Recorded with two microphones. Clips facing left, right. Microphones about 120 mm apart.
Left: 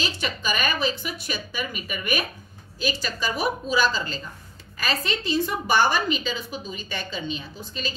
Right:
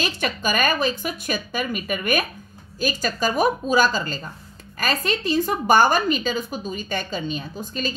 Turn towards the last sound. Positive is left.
turn(degrees=-45)  # may be behind; listen again after turning